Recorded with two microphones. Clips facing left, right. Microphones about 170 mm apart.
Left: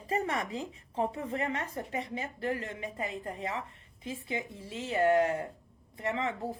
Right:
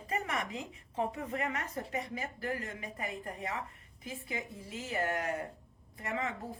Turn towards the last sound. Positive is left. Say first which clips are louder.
# left 4 dB
turn(degrees=25)  # may be behind; listen again after turning